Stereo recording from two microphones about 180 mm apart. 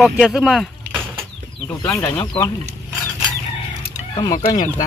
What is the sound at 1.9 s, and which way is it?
Speech, 10° left (ahead or behind).